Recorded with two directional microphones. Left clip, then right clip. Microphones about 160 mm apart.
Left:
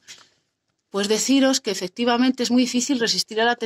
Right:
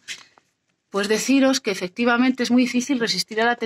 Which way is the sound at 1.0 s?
10° right (ahead or behind).